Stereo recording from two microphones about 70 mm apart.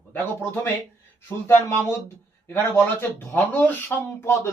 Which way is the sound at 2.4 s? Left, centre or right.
Left.